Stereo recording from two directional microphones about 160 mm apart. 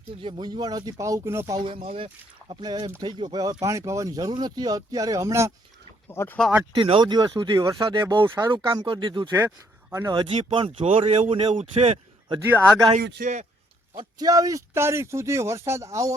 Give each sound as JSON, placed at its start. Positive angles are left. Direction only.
{"t": 0.2, "sound": "speech", "side_deg": -30}
{"t": 6.1, "sound": "speech", "side_deg": 10}
{"t": 6.7, "sound": "speech", "side_deg": -35}
{"t": 10.2, "sound": "speech", "side_deg": -30}
{"t": 12.5, "sound": "speech", "side_deg": -10}
{"t": 13.0, "sound": "speech", "side_deg": -70}
{"t": 13.9, "sound": "speech", "side_deg": -25}